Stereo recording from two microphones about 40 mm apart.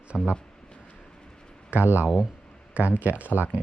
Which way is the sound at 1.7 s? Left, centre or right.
Right.